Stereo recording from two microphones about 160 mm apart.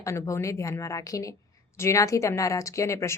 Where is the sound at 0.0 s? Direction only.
20° left (ahead or behind).